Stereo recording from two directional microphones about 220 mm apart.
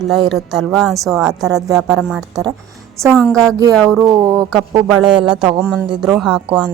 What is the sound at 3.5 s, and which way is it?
Speech, 15° right (ahead or behind).